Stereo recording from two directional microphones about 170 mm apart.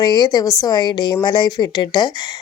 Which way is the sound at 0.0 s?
25° left (ahead or behind).